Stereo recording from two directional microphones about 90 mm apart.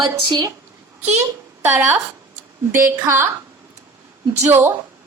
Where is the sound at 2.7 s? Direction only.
30° right (ahead or behind).